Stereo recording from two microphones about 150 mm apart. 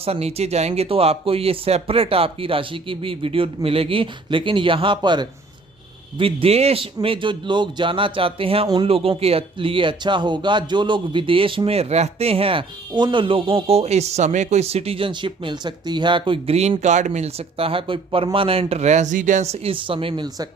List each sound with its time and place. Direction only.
0.0 s speech: 40° right (ahead or behind)
8.6 s speech: 25° right (ahead or behind)
8.9 s speech: 40° right (ahead or behind)